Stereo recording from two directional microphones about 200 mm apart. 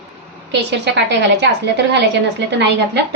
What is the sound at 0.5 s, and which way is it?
A woman's voice, 60° right (ahead or behind).